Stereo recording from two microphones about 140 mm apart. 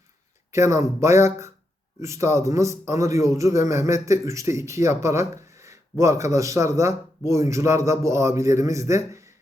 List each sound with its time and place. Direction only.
0.5 s speech: 20° right (ahead or behind)